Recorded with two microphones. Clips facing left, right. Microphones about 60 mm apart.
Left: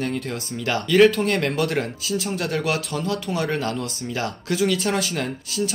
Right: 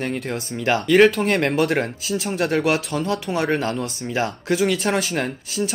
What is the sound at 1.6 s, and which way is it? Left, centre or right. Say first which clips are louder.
Speech: right 3 dB; right.